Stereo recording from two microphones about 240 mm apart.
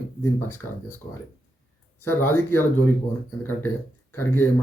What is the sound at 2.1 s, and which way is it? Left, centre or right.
Speech, centre.